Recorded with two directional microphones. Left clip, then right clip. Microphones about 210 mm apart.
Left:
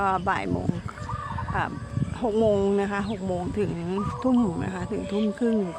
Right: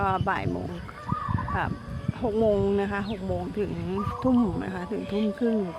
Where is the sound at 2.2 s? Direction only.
15° left (ahead or behind).